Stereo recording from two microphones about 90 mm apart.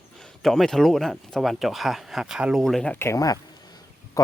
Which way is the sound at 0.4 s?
5° left (ahead or behind).